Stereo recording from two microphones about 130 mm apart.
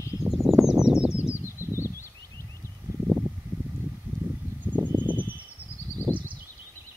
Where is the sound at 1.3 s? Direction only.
20° left (ahead or behind).